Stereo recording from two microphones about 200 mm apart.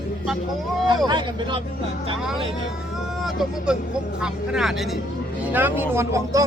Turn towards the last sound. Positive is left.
turn(degrees=-15)  # may be behind; listen again after turning